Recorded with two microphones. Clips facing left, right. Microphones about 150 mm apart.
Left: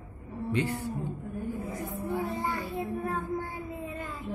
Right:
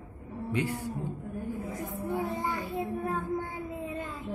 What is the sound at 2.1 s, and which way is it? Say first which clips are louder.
Child singing: even; 15° right (ahead or behind).